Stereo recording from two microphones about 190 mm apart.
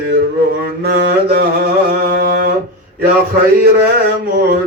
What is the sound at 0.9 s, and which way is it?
Mantra, 55° right (ahead or behind).